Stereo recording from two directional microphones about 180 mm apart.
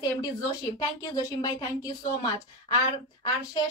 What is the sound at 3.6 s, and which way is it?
Speech, 20° left (ahead or behind).